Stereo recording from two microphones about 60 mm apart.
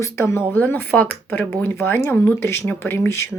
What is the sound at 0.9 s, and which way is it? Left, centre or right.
Speech, left.